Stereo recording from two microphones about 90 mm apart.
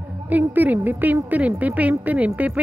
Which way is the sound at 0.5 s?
20° right (ahead or behind).